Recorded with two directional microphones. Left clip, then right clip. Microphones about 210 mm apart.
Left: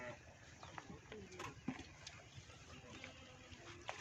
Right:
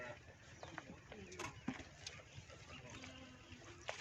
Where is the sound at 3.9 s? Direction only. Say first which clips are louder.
Right 2 dB; 40° right (ahead or behind).